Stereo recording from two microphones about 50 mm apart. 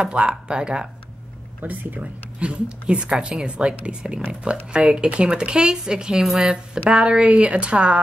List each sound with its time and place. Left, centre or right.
0.1 s speech: right
1.6 s speech: right; by 6.8 s centre
6.9 s speech: right